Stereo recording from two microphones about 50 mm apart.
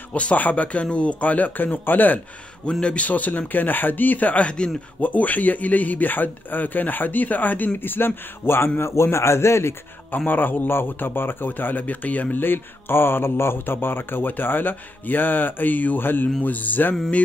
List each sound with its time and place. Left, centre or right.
0.1 s a man's voice: left
2.8 s a man's voice: left
10.1 s a man's voice: left